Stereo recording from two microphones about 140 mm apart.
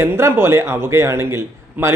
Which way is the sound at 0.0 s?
15° right (ahead or behind).